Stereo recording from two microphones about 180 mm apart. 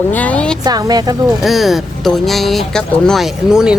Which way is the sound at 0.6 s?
20° right (ahead or behind).